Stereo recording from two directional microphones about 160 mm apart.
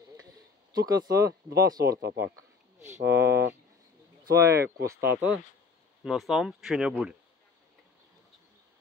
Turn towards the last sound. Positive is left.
turn(degrees=-5)  # may be behind; listen again after turning